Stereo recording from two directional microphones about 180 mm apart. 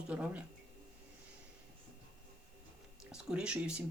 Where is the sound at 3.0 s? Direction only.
5° right (ahead or behind).